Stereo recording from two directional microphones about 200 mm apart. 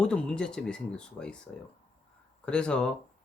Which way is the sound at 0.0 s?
5° left (ahead or behind).